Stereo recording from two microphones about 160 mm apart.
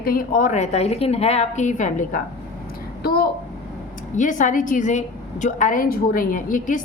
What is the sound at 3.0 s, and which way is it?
Speech, 75° left (ahead or behind).